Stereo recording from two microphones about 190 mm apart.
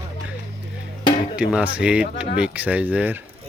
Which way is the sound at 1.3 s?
5° right (ahead or behind).